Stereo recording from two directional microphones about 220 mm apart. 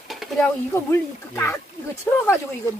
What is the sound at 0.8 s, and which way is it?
Speech, 10° left (ahead or behind).